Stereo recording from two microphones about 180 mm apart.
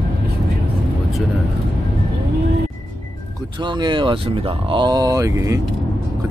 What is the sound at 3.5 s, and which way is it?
Speech, 25° right (ahead or behind).